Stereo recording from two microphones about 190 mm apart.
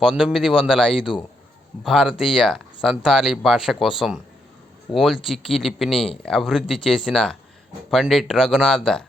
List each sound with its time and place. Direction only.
0.0 s speech: centre (ahead or behind)